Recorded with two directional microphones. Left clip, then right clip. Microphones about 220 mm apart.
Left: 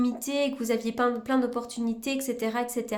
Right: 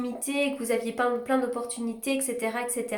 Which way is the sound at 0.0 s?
45° left (ahead or behind).